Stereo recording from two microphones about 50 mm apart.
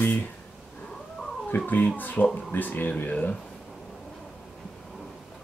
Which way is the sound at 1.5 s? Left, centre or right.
Left.